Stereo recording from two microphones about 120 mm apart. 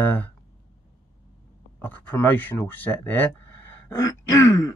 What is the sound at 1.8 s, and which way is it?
Speech, 15° left (ahead or behind).